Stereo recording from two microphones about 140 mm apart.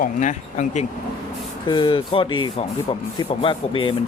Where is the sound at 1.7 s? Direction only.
35° left (ahead or behind).